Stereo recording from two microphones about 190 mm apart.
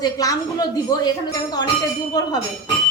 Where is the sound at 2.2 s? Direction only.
20° left (ahead or behind).